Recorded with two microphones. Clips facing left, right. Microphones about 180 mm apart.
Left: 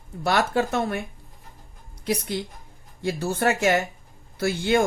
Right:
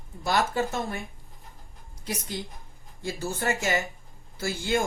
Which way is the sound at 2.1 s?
65° left (ahead or behind).